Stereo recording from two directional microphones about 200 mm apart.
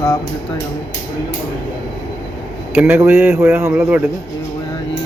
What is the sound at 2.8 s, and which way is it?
Speech, 10° right (ahead or behind).